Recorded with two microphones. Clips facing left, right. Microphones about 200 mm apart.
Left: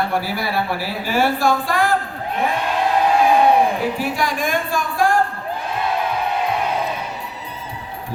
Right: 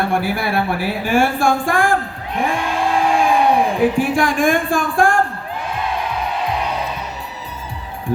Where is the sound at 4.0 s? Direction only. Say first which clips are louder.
Right 5 dB; 50° right (ahead or behind).